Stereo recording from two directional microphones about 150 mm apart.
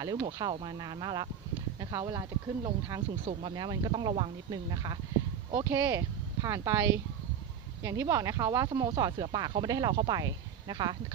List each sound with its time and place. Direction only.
0.0 s speech: 25° right (ahead or behind)
7.8 s speech: 20° right (ahead or behind)